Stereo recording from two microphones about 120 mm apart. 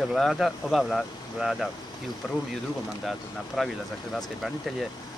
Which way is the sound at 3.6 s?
5° right (ahead or behind).